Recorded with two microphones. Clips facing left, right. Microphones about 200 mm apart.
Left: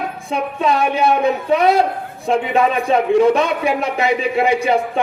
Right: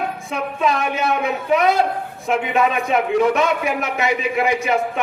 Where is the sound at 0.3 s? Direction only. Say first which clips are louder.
Left 3 dB; 30° left (ahead or behind).